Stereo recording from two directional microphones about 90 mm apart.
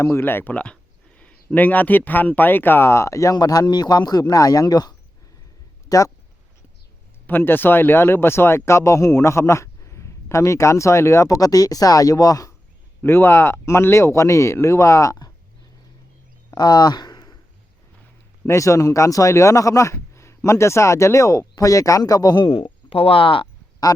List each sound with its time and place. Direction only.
0.0 s speech: 25° left (ahead or behind); by 6.1 s 40° left (ahead or behind)
7.3 s speech: 25° left (ahead or behind); by 12.5 s 40° left (ahead or behind)
13.0 s speech: 25° left (ahead or behind)
16.5 s a sound: 50° left (ahead or behind)
18.4 s speech: 35° left (ahead or behind)
22.4 s speech: 90° left